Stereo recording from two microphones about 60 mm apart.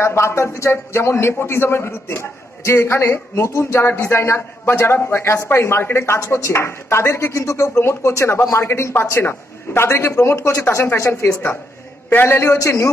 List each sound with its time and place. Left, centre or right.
0.0 s a man's voice: left
6.1 s a man's voice: left
12.1 s a man's voice: left